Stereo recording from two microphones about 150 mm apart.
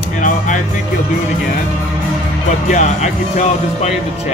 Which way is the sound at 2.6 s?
50° left (ahead or behind).